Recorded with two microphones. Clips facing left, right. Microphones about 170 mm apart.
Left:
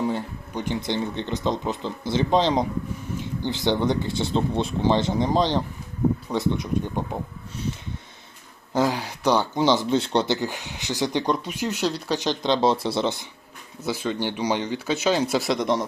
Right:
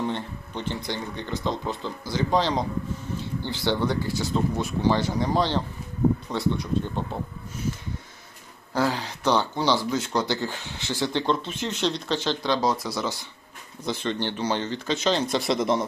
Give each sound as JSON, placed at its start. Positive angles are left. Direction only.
{"t": 0.0, "sound": "speech", "side_deg": 10}
{"t": 8.7, "sound": "speech", "side_deg": 15}
{"t": 10.2, "sound": "speech", "side_deg": 15}
{"t": 13.8, "sound": "speech", "side_deg": 5}